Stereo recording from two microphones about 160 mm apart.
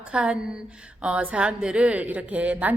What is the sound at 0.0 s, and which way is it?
A woman's voice, 5° right (ahead or behind).